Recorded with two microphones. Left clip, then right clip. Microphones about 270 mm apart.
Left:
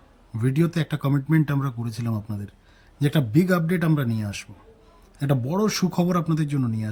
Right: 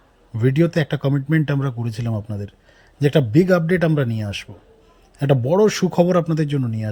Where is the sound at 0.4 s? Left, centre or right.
Centre.